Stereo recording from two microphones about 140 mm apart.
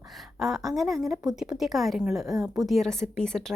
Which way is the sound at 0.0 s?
Centre (ahead or behind).